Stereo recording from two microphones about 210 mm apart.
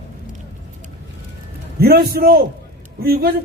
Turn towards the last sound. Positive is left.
turn(degrees=-45)  # may be behind; listen again after turning